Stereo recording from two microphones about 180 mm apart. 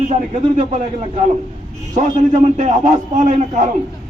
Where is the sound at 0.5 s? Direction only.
40° right (ahead or behind).